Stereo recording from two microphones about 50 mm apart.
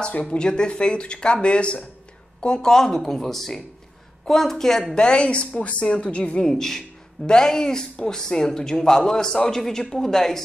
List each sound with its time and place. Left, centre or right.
0.2 s speech: centre
6.4 s speech: centre